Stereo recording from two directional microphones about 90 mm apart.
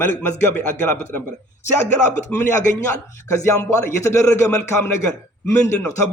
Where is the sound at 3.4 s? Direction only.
35° left (ahead or behind).